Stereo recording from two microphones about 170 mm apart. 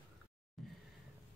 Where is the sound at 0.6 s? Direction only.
Centre (ahead or behind).